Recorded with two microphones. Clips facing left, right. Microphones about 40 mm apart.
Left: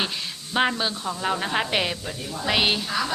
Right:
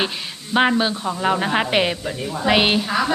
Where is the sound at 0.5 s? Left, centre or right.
Centre.